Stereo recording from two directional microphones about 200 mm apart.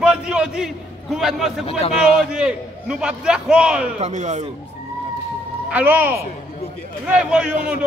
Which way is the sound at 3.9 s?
35° right (ahead or behind).